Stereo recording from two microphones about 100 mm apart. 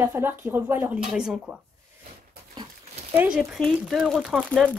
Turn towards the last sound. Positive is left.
turn(degrees=-15)  # may be behind; listen again after turning